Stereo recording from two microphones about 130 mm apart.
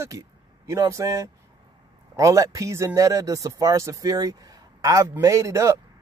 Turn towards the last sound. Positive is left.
turn(degrees=-25)  # may be behind; listen again after turning